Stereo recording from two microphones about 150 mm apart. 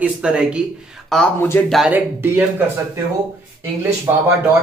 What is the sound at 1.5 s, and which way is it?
Speech, 15° left (ahead or behind).